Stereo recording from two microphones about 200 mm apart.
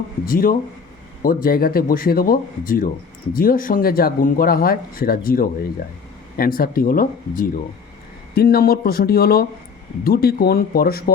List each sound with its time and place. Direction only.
0.3 s speech: 45° left (ahead or behind)